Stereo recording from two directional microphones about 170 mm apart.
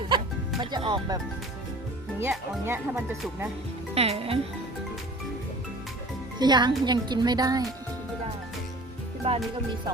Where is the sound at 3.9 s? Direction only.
35° right (ahead or behind).